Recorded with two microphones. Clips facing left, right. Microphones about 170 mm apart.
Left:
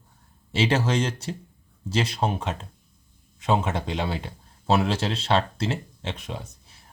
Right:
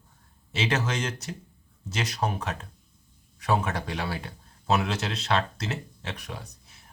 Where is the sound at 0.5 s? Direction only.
30° left (ahead or behind).